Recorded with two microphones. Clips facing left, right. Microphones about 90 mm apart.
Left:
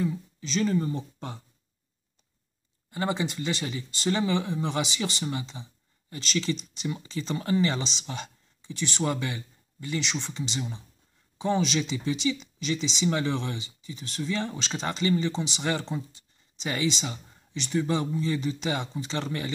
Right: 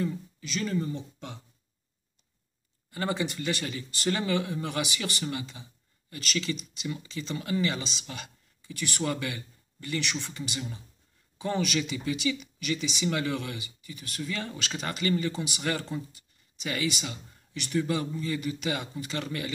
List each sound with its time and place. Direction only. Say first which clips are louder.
0.4 s speech: left 5 dB; 30° left (ahead or behind)
2.9 s speech: left 2 dB; 20° left (ahead or behind)